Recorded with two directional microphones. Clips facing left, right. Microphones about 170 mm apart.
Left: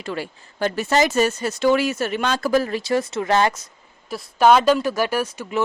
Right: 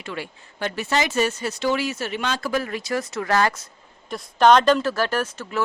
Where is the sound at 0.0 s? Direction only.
40° left (ahead or behind); by 3.6 s 25° left (ahead or behind).